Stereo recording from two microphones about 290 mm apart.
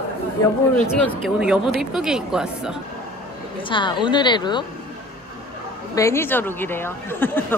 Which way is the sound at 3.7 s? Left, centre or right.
Centre.